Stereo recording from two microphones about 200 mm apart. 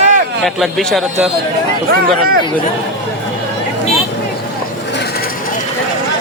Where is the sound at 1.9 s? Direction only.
50° right (ahead or behind).